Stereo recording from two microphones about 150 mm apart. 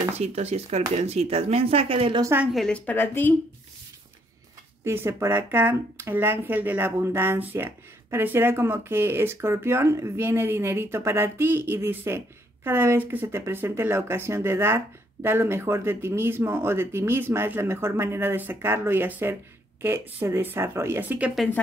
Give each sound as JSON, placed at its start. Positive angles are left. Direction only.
{"t": 0.1, "sound": "speech", "side_deg": -45}
{"t": 2.2, "sound": "speech", "side_deg": -10}
{"t": 2.5, "sound": "speech", "side_deg": 5}
{"t": 4.8, "sound": "speech", "side_deg": -15}